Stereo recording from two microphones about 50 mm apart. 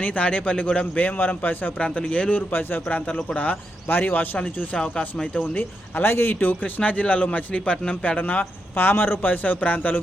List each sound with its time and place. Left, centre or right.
0.0 s a man's voice: left
2.5 s speech: left
3.3 s a man's voice: left
4.8 s speech: centre
5.5 s speech: left
6.5 s a man's voice: left
8.2 s a man's voice: left
8.7 s a man's voice: left